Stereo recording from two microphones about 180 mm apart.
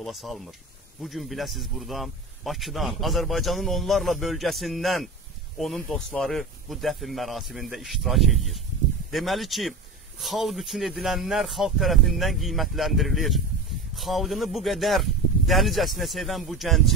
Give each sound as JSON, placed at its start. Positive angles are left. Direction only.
{"t": 0.0, "sound": "speech", "side_deg": 0}